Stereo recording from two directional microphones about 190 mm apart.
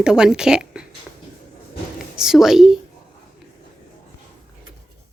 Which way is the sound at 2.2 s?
5° right (ahead or behind).